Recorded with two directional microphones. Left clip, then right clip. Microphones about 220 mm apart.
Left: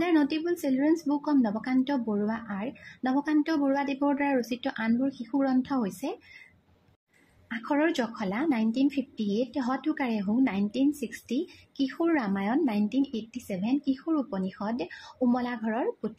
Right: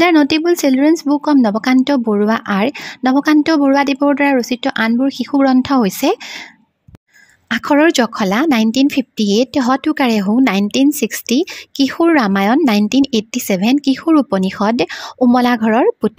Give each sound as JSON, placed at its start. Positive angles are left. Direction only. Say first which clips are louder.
{"t": 0.0, "sound": "speech", "louder": "right 15 dB", "side_deg": -45}
{"t": 7.4, "sound": "speech", "louder": "right 15 dB", "side_deg": -45}